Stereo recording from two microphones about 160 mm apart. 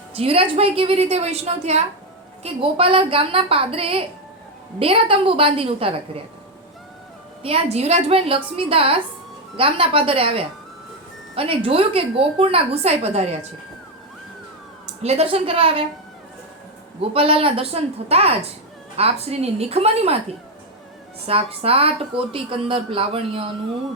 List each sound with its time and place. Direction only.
0.2 s a woman's voice: 35° right (ahead or behind)
7.4 s a woman's voice: 40° right (ahead or behind)
15.0 s a woman's voice: 40° right (ahead or behind)
17.0 s a woman's voice: 35° right (ahead or behind)
21.2 s a woman's voice: 40° right (ahead or behind)